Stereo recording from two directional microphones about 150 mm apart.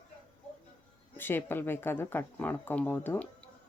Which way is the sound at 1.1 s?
15° left (ahead or behind).